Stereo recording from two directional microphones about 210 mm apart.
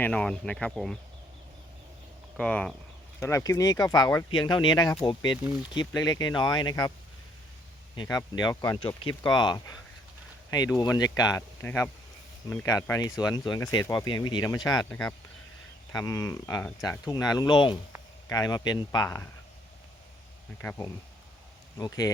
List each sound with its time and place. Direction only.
0.0 s speech: 5° left (ahead or behind)
2.3 s speech: 5° left (ahead or behind)
7.9 s speech: 20° left (ahead or behind)
20.6 s speech: 10° left (ahead or behind)